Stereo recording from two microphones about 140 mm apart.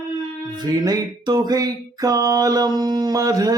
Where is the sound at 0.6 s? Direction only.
25° right (ahead or behind).